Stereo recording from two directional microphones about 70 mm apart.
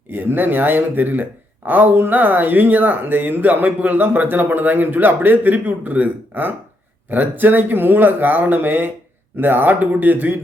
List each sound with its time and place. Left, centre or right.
0.1 s speech: right